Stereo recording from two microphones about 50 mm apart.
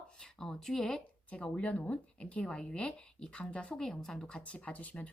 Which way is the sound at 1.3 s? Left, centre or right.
Left.